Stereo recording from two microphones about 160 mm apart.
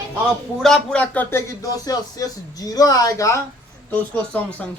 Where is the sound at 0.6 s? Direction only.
5° left (ahead or behind); by 3.4 s 20° left (ahead or behind).